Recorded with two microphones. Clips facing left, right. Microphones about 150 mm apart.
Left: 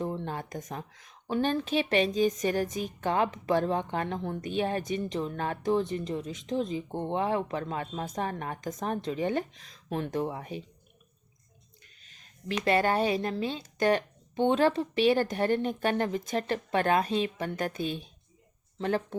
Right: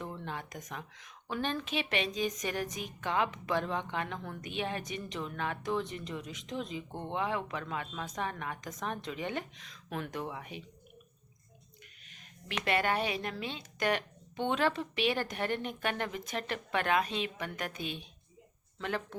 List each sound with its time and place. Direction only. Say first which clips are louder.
0.0 s a woman's voice: left 7 dB; 35° left (ahead or behind)
12.0 s a woman's voice: left 10 dB; 35° left (ahead or behind)